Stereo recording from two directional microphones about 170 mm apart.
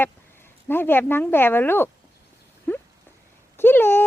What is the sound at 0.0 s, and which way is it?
Speech, 15° left (ahead or behind).